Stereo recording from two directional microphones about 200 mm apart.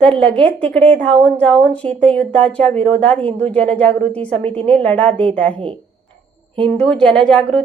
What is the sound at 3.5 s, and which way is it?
A woman's voice, 5° left (ahead or behind).